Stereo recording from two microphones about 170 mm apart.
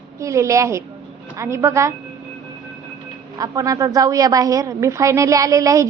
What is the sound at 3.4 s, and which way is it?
A woman's voice, 20° right (ahead or behind).